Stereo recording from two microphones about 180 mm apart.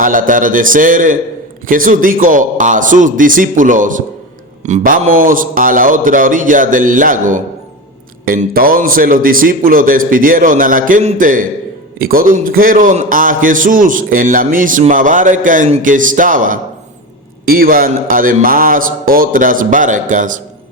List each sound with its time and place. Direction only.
0.0 s a man's voice: 50° right (ahead or behind)